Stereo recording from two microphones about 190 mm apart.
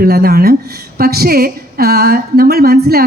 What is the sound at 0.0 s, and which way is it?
A woman's voice, 55° right (ahead or behind).